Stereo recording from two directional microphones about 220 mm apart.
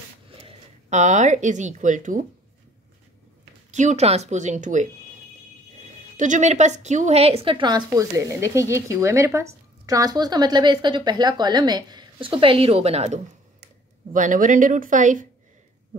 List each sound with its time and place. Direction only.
0.4 s speech: 30° right (ahead or behind)
3.7 s speech: 30° right (ahead or behind)
6.1 s a woman's voice: 35° right (ahead or behind)